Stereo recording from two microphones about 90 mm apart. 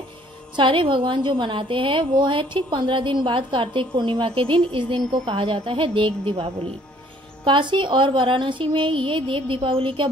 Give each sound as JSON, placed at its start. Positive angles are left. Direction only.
{"t": 0.6, "sound": "a woman's voice", "side_deg": -70}
{"t": 7.4, "sound": "a woman's voice", "side_deg": -65}